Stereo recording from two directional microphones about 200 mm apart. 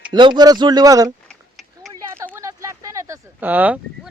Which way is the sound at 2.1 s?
10° right (ahead or behind).